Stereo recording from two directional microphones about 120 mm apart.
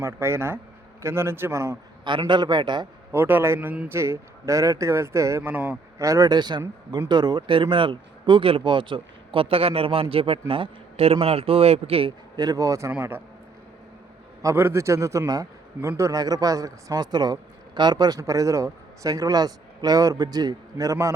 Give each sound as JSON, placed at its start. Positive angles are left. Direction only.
{"t": 0.0, "sound": "a man's voice", "side_deg": -20}
{"t": 2.0, "sound": "a man's voice", "side_deg": -40}
{"t": 3.1, "sound": "a man's voice", "side_deg": -20}
{"t": 6.0, "sound": "a man's voice", "side_deg": -30}
{"t": 12.4, "sound": "a man's voice", "side_deg": -30}
{"t": 12.9, "sound": "speech", "side_deg": -15}
{"t": 14.4, "sound": "a man's voice", "side_deg": -20}